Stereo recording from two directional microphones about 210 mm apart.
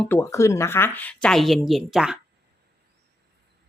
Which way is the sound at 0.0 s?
10° left (ahead or behind).